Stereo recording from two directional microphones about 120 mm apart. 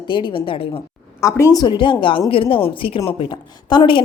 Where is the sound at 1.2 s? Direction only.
25° left (ahead or behind); by 4.0 s 45° left (ahead or behind).